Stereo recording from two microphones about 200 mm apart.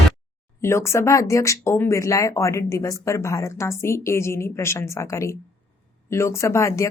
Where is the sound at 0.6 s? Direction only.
15° left (ahead or behind).